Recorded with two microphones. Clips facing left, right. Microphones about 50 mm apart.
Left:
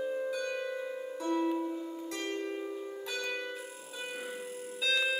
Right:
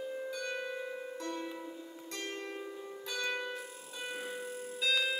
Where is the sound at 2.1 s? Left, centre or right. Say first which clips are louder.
Left 3 dB; centre.